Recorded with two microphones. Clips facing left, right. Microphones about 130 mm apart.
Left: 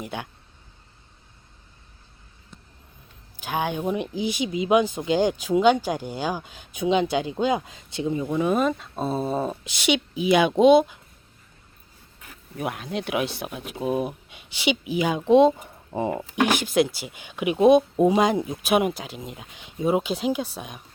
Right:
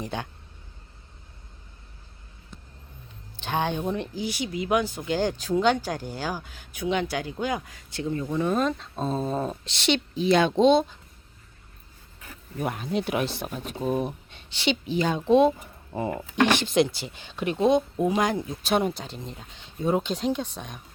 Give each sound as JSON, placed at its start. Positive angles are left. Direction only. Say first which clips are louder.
{"t": 0.0, "sound": "speech", "louder": "right 1 dB", "side_deg": 10}
{"t": 3.3, "sound": "speech", "louder": "even", "side_deg": 10}
{"t": 12.5, "sound": "speech", "louder": "right 1 dB", "side_deg": 0}
{"t": 16.4, "sound": "speech", "louder": "even", "side_deg": 10}